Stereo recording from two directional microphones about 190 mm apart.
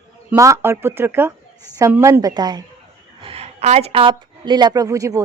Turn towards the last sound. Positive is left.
turn(degrees=-15)  # may be behind; listen again after turning